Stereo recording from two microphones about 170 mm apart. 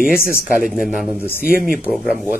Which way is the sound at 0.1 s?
60° left (ahead or behind).